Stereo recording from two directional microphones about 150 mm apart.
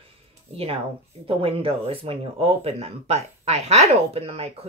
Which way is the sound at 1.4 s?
40° right (ahead or behind).